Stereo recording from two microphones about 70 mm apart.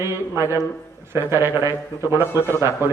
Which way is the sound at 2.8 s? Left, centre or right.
Right.